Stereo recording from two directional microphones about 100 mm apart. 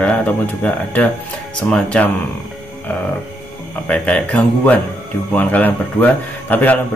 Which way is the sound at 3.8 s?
10° left (ahead or behind).